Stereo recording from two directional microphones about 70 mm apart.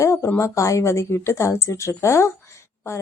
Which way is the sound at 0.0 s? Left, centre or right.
Left.